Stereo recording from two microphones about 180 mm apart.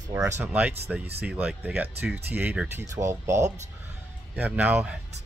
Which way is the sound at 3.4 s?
40° right (ahead or behind).